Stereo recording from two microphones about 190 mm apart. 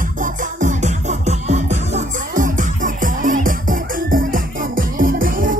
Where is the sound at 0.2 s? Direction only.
40° right (ahead or behind).